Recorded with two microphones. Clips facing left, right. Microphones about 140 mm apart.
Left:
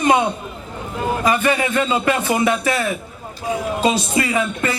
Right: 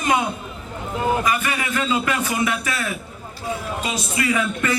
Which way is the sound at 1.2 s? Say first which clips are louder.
Left 6 dB; 30° left (ahead or behind).